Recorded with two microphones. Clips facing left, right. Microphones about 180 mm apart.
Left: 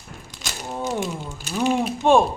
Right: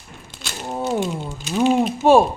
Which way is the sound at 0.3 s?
15° right (ahead or behind).